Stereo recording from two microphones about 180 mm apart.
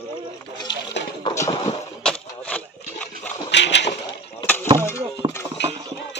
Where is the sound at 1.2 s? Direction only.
20° left (ahead or behind).